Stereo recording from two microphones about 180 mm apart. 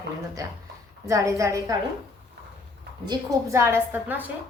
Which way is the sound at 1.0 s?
15° right (ahead or behind).